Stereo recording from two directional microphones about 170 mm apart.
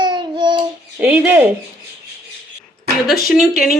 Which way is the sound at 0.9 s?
5° right (ahead or behind).